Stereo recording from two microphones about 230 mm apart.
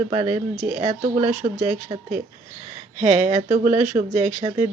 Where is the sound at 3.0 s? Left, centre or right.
Right.